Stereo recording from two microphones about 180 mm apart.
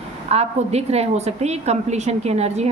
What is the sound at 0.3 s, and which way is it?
A woman's voice, 35° right (ahead or behind).